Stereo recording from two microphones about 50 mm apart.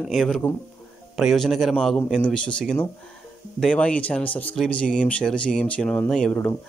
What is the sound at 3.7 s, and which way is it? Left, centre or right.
Speech, left.